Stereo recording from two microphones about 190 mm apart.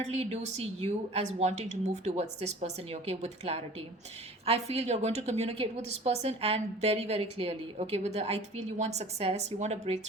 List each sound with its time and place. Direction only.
0.0 s a woman's voice: 35° right (ahead or behind)